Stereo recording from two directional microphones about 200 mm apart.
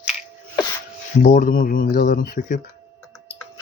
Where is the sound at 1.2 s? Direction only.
40° left (ahead or behind).